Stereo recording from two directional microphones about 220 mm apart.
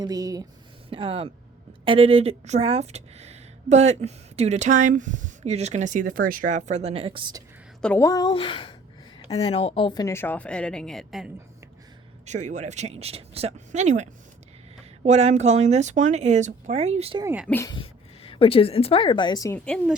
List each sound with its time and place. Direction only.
0.0 s speech: 15° right (ahead or behind)
7.8 s speech: 10° left (ahead or behind)
12.2 s speech: 35° right (ahead or behind)
17.2 s speech: 5° right (ahead or behind)
17.5 s speech: 15° left (ahead or behind)
17.7 s a woman's voice: 25° left (ahead or behind); by 20.0 s 5° left (ahead or behind)